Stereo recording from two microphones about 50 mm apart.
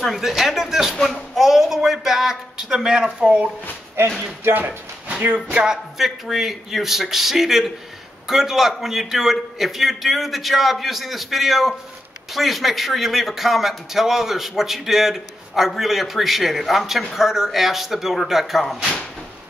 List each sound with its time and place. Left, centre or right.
0.0 s speech: centre; by 3.5 s right
4.6 s a sound: right
5.3 s speech: centre
5.9 s a man's voice: centre